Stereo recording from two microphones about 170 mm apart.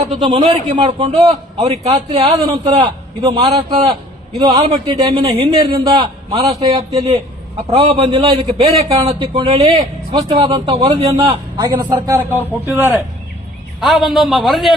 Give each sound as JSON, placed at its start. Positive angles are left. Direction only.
{"t": 0.3, "sound": "a man's voice", "side_deg": -35}
{"t": 7.7, "sound": "a man's voice", "side_deg": -35}
{"t": 13.8, "sound": "a man's voice", "side_deg": 0}